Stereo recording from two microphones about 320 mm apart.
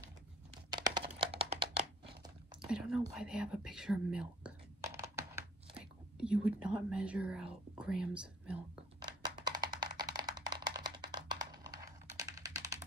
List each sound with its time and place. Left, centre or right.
0.7 s a sound: centre
1.1 s crumpling: centre
2.6 s speech: centre
9.0 s music: centre